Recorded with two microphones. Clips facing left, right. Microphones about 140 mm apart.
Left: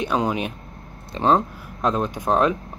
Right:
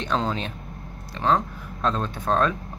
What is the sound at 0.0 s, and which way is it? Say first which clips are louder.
Speech: left 3 dB; 10° left (ahead or behind).